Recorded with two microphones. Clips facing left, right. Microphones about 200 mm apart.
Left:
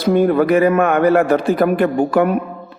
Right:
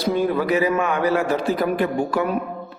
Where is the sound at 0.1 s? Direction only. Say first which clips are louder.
Left 7 dB; 55° left (ahead or behind).